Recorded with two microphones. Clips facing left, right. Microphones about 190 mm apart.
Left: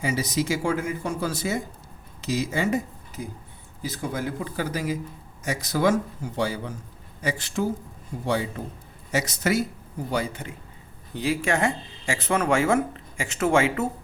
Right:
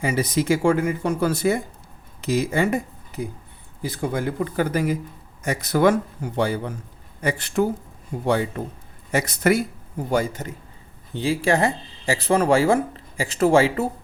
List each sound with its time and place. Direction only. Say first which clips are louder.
0.0 s speech: right 3 dB; 55° right (ahead or behind)
10.1 s a man's voice: right 5 dB; 45° right (ahead or behind)
11.1 s speech: right 4 dB; 30° right (ahead or behind)